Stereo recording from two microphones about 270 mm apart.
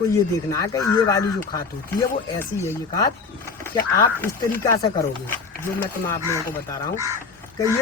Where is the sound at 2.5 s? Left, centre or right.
Centre.